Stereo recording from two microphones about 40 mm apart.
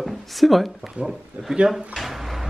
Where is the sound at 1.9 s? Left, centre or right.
Centre.